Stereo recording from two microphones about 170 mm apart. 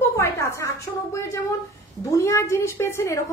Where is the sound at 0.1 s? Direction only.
15° left (ahead or behind).